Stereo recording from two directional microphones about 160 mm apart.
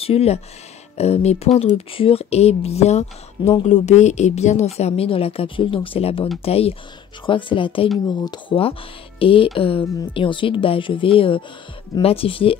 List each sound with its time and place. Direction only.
0.0 s a woman's voice: 40° left (ahead or behind)